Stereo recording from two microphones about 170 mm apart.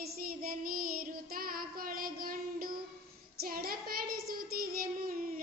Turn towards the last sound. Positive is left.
turn(degrees=-60)  # may be behind; listen again after turning